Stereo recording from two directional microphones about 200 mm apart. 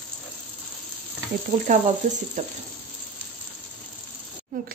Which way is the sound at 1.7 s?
40° right (ahead or behind).